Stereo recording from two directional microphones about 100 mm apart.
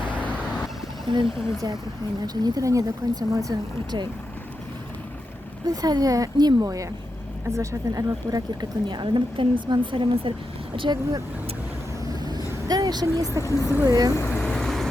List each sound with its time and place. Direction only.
0.1 s vehicle: 15° left (ahead or behind)
1.1 s speech: 50° right (ahead or behind)
5.6 s speech: 40° right (ahead or behind)
8.9 s a woman's voice: 50° right (ahead or behind)
12.0 s vehicle: 40° right (ahead or behind)
12.6 s speech: 40° right (ahead or behind)
13.4 s speech: 35° left (ahead or behind)
13.8 s speech: 35° right (ahead or behind)
14.2 s vehicle: 20° left (ahead or behind)
14.4 s vehicle: 5° left (ahead or behind)